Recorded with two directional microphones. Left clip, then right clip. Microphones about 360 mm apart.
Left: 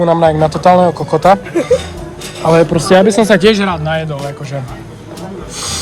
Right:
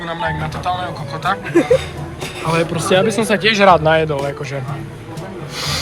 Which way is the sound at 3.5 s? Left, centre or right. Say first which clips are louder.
Right 5 dB; centre.